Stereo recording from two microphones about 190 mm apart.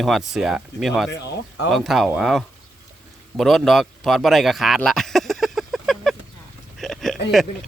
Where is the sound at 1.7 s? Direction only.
Centre (ahead or behind).